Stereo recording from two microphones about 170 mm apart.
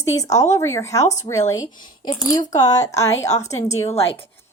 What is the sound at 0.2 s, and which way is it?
Speech, 20° left (ahead or behind).